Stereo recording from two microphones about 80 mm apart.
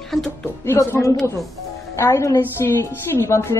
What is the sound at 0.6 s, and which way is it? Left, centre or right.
A woman's voice, left.